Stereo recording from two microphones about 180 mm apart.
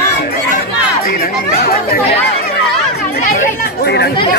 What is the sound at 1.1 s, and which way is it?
Chatter, 55° left (ahead or behind).